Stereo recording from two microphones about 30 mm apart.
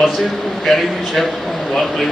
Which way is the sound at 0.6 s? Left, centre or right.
Centre.